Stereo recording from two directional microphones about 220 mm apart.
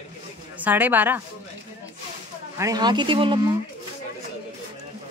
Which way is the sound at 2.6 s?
15° right (ahead or behind).